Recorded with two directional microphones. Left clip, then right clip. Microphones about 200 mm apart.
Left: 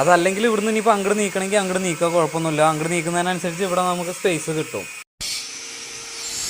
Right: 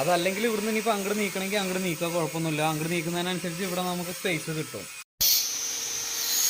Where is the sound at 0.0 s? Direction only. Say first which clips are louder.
Left 9 dB; 10° left (ahead or behind).